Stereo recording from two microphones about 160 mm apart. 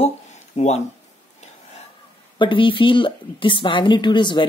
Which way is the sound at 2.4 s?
30° left (ahead or behind).